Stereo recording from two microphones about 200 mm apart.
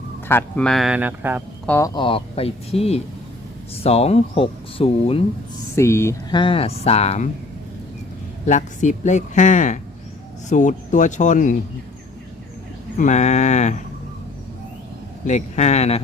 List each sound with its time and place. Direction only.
0.3 s speech: 10° left (ahead or behind); by 1.4 s 10° right (ahead or behind)
1.6 s speech: 15° left (ahead or behind); by 5.2 s 30° left (ahead or behind)
5.7 s speech: 15° left (ahead or behind)
6.4 s speech: 30° left (ahead or behind)
8.4 s speech: 40° left (ahead or behind)
13.0 s speech: 35° left (ahead or behind)
15.3 s speech: 35° left (ahead or behind)